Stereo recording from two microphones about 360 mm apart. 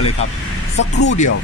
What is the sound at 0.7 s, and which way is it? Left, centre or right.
Speech, left.